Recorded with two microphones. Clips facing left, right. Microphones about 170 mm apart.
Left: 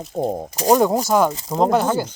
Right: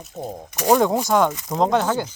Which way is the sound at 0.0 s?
55° left (ahead or behind).